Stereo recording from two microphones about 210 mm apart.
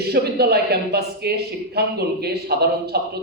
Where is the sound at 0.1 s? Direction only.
50° right (ahead or behind).